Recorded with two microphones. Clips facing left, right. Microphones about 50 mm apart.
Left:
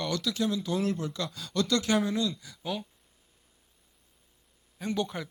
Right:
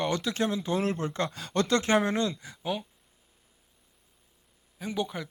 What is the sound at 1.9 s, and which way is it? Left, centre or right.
Speech, right.